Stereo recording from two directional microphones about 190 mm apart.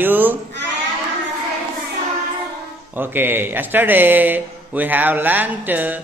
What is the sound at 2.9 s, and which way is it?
Speech, 10° right (ahead or behind).